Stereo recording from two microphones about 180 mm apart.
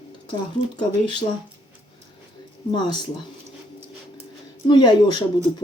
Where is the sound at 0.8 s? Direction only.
25° left (ahead or behind).